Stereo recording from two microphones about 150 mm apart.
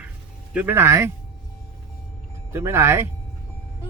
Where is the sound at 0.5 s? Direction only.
15° right (ahead or behind).